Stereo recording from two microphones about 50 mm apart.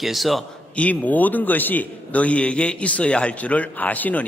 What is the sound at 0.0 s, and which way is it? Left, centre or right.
Speech, centre.